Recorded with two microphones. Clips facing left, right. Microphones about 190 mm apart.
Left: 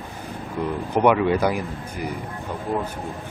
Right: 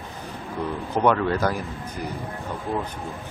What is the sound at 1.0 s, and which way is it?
Speech, 10° left (ahead or behind).